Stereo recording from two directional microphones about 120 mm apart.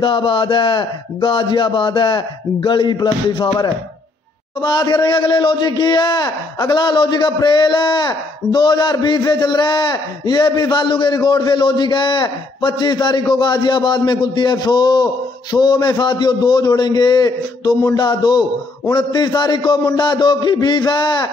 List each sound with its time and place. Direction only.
0.0 s speech: 45° left (ahead or behind)